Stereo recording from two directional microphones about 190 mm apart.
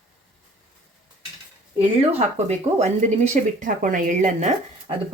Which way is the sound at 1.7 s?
35° right (ahead or behind).